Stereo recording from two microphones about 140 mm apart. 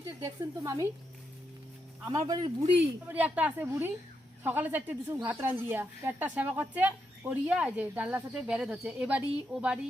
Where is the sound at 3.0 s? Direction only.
10° right (ahead or behind).